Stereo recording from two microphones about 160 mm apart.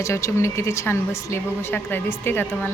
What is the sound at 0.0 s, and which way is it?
Speech, 20° left (ahead or behind).